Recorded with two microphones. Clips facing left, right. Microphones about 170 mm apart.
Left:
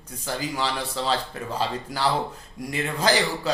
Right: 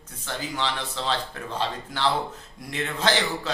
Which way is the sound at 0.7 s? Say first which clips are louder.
Left 2 dB; 10° left (ahead or behind).